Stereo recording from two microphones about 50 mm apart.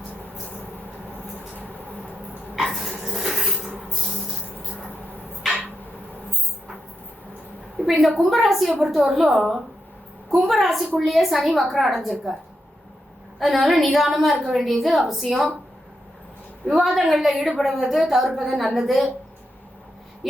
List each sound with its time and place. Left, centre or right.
2.6 s dog: centre
7.9 s a woman's voice: centre
13.4 s a woman's voice: centre
16.7 s a woman's voice: centre